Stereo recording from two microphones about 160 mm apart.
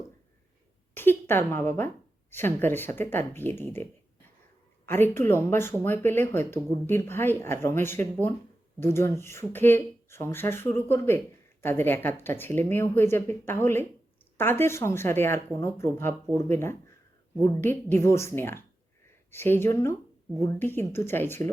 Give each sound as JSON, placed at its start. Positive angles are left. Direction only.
{"t": 0.9, "sound": "a sound", "side_deg": 15}
{"t": 2.3, "sound": "speech", "side_deg": 15}
{"t": 4.9, "sound": "speech", "side_deg": 15}